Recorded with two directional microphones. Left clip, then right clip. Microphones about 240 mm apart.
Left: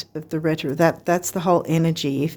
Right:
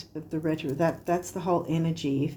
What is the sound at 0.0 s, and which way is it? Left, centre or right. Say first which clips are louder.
Speech: left 7 dB; left.